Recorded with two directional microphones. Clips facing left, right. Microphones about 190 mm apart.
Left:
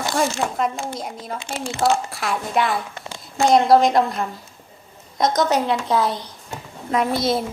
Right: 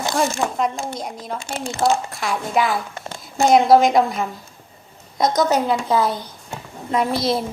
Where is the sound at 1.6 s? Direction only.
Centre (ahead or behind).